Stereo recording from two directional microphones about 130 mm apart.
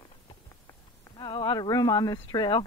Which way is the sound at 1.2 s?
35° left (ahead or behind).